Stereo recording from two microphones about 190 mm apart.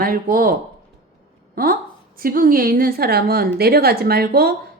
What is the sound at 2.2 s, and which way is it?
A woman's voice, 50° right (ahead or behind).